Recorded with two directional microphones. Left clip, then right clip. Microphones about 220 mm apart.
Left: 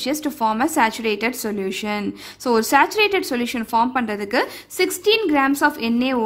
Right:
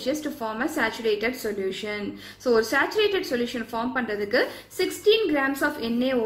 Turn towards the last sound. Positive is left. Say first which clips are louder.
# left 4 dB
turn(degrees=50)  # may be behind; listen again after turning